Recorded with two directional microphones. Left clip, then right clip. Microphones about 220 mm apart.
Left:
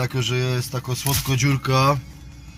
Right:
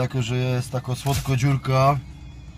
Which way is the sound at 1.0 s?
5° left (ahead or behind).